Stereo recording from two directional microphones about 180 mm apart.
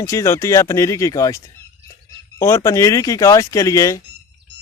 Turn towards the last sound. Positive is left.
turn(degrees=15)  # may be behind; listen again after turning